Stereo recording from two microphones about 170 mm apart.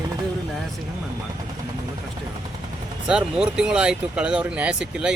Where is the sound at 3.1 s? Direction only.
5° right (ahead or behind).